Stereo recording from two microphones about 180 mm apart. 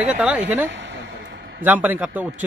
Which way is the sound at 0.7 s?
80° right.